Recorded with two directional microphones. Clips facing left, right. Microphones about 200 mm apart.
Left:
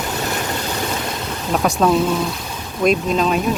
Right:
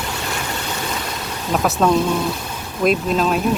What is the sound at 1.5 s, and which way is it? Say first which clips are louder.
Speech: even; centre (ahead or behind).